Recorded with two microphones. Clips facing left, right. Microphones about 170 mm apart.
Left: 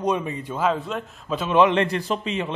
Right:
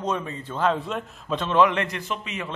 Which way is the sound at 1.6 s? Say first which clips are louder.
Left 3 dB; 25° left (ahead or behind).